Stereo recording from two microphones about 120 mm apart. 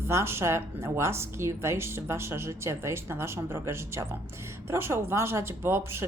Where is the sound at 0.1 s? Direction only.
20° right (ahead or behind).